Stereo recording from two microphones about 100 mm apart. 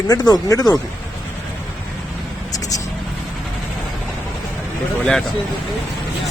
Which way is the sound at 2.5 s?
35° left (ahead or behind).